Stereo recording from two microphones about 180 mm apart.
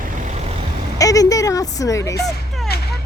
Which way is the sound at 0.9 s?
20° left (ahead or behind).